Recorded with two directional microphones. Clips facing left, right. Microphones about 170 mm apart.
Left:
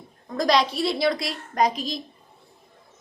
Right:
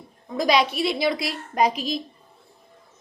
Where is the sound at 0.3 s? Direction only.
5° right (ahead or behind).